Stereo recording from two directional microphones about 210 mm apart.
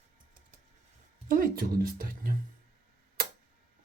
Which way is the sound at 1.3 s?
45° right (ahead or behind).